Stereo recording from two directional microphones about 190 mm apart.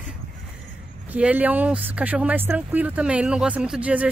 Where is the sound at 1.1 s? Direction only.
10° right (ahead or behind).